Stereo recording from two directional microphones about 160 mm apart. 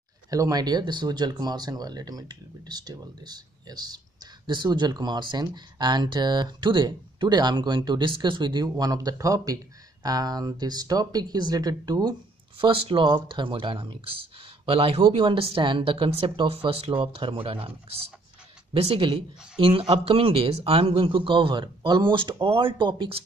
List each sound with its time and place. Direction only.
0.3 s speech: 25° right (ahead or behind)